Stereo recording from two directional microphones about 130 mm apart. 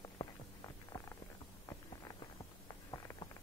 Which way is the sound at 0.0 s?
30° left (ahead or behind).